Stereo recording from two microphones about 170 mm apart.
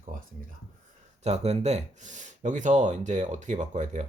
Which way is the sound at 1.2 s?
40° right (ahead or behind).